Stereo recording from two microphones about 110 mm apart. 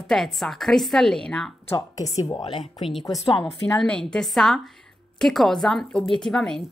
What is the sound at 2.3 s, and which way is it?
Speech, 45° left (ahead or behind).